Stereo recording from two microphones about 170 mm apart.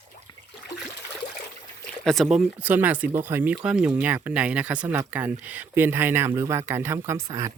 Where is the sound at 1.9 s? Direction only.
5° left (ahead or behind).